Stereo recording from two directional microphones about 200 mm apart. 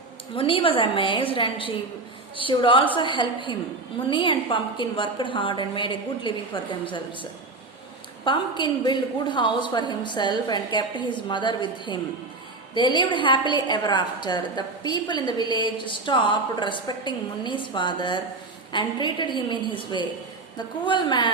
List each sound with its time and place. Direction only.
0.3 s a woman's voice: 25° left (ahead or behind)